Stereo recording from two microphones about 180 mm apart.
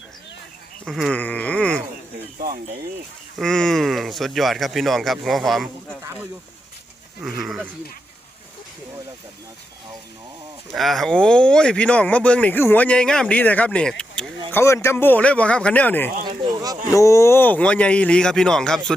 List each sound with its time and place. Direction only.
0.9 s speech: centre (ahead or behind)
3.3 s speech: 5° left (ahead or behind)
7.2 s speech: centre (ahead or behind)
10.7 s speech: centre (ahead or behind)
14.5 s speech: 15° left (ahead or behind)
16.4 s a sound: 20° right (ahead or behind)
16.9 s speech: 15° left (ahead or behind)